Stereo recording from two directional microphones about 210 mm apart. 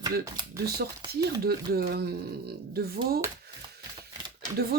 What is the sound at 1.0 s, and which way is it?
Speech, 20° right (ahead or behind).